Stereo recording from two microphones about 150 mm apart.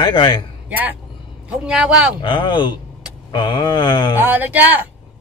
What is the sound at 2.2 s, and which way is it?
Speech, 30° left (ahead or behind).